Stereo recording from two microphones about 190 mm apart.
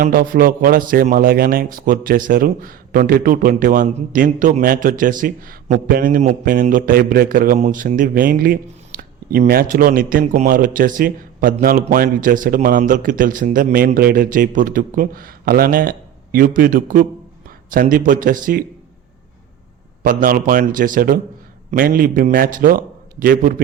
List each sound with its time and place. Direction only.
0.0 s speech: 50° right (ahead or behind)
20.0 s speech: 45° right (ahead or behind)